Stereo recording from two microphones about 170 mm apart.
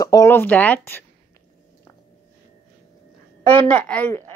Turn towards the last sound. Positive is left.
turn(degrees=15)  # may be behind; listen again after turning